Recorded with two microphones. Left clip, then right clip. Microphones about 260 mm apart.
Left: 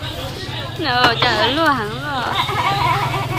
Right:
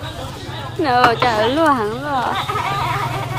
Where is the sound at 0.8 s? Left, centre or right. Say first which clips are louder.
Right 1 dB; right.